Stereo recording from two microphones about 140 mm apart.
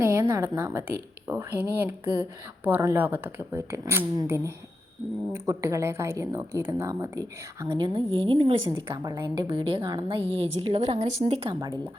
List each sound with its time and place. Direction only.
0.0 s a woman's voice: 20° right (ahead or behind)
7.9 s a woman's voice: 45° right (ahead or behind)
9.0 s a woman's voice: 30° right (ahead or behind); by 11.5 s 45° right (ahead or behind)